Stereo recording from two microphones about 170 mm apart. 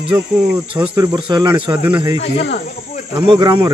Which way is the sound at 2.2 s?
85° left.